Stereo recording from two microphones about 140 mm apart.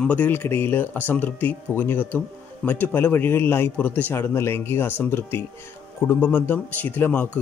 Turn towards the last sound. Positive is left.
turn(degrees=15)  # may be behind; listen again after turning